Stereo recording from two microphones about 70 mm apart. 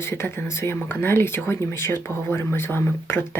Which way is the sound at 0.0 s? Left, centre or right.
Left.